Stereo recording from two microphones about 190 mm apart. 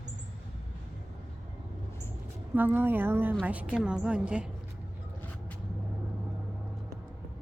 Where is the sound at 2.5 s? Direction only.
10° right (ahead or behind).